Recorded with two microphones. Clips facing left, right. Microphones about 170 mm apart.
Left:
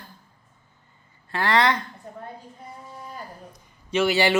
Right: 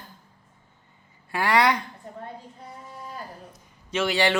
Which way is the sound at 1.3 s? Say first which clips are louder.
Even; 10° right (ahead or behind).